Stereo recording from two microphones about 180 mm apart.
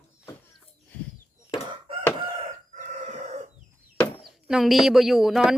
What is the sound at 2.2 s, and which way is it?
Chicken, 30° right (ahead or behind).